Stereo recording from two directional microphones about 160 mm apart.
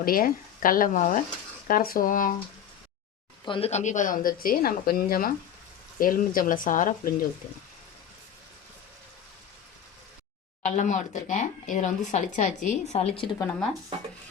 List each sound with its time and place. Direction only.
0.0 s speech: 65° left (ahead or behind)
1.6 s speech: 65° left (ahead or behind)
3.4 s speech: 30° left (ahead or behind)
3.7 s speech: 45° left (ahead or behind)
10.6 s speech: 50° left (ahead or behind)